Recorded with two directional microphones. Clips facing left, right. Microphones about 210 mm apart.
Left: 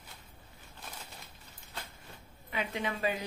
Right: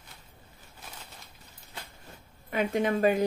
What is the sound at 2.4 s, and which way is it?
Speech, 45° right (ahead or behind).